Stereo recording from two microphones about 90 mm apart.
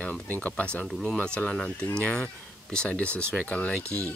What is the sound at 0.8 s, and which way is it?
Speech, 5° left (ahead or behind).